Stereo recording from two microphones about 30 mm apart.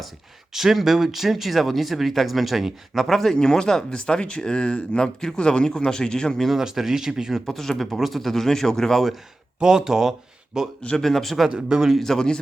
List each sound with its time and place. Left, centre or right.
0.5 s speech: centre
3.1 s a man's voice: centre
3.3 s a man's voice: left
3.9 s speech: left
5.6 s a man's voice: centre
6.6 s speech: centre
7.4 s a man's voice: centre
9.6 s speech: right
11.0 s a man's voice: centre
11.4 s speech: right
12.0 s a man's voice: centre